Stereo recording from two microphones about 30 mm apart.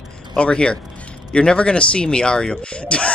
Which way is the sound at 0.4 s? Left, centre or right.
Left.